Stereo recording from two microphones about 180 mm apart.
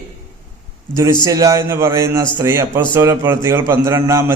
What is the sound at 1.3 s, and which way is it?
A man's voice, 15° right (ahead or behind).